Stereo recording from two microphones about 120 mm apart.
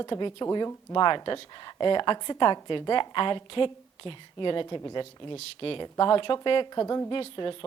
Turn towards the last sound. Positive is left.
turn(degrees=45)  # may be behind; listen again after turning